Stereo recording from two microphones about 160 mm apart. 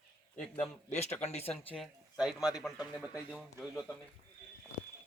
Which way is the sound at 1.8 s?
5° right (ahead or behind).